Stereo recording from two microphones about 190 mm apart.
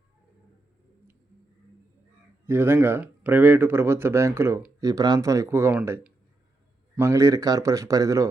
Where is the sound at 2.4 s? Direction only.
10° right (ahead or behind).